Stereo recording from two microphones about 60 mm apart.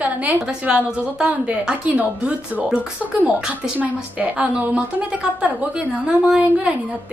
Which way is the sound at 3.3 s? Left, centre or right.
Right.